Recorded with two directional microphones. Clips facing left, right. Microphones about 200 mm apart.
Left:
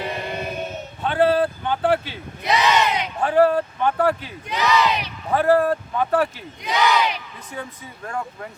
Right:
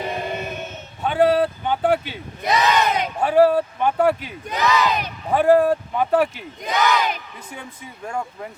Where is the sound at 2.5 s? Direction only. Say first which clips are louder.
Even; 50° right (ahead or behind).